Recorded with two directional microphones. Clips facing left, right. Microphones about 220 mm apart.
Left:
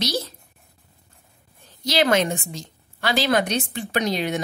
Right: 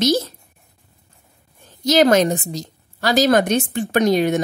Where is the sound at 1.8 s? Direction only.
45° right (ahead or behind).